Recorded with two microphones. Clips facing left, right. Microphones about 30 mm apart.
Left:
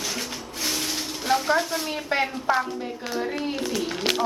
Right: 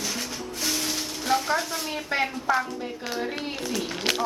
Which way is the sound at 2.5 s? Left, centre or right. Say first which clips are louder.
Left 1 dB; left.